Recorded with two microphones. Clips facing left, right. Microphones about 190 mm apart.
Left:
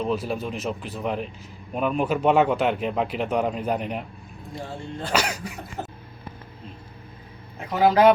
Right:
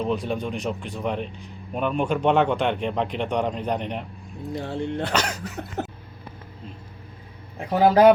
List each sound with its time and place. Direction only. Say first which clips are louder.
0.0 s speech: right 1 dB; 5° left (ahead or behind)
4.6 s speech: right 5 dB; 65° right (ahead or behind)
5.1 s speech: even; 10° left (ahead or behind)
7.7 s speech: right 2 dB; 30° right (ahead or behind)